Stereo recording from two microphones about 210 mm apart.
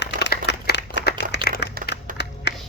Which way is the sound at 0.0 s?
55° left (ahead or behind).